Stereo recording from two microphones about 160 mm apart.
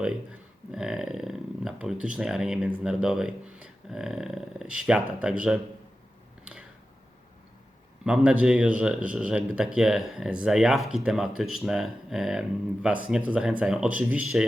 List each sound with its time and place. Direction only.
0.7 s speech: 5° right (ahead or behind)
8.0 s speech: 5° right (ahead or behind)